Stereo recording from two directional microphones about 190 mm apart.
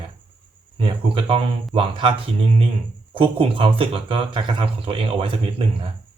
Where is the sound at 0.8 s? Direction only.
30° right (ahead or behind).